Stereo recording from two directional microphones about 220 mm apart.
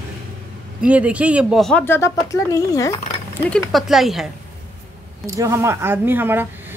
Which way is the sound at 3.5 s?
Centre (ahead or behind).